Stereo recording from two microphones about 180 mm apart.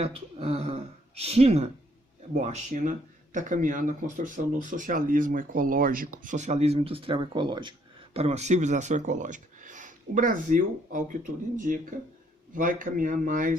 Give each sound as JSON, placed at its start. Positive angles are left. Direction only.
{"t": 0.0, "sound": "speech", "side_deg": -35}
{"t": 8.1, "sound": "speech", "side_deg": -35}